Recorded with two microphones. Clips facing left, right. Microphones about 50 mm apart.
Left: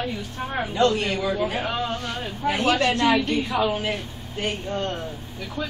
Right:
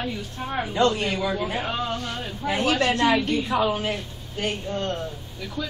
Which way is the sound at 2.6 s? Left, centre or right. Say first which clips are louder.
Left 1 dB; left.